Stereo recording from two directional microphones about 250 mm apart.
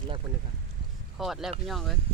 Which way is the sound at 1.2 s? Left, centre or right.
Centre.